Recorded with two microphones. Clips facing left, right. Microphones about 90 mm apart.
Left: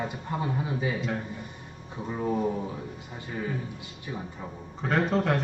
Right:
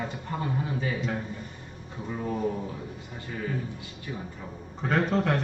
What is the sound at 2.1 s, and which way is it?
Speech, 15° left (ahead or behind).